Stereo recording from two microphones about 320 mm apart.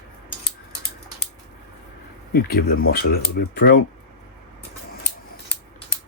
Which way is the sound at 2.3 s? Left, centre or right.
Left.